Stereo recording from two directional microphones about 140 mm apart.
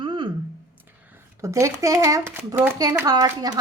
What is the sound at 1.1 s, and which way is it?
Speech, 20° right (ahead or behind).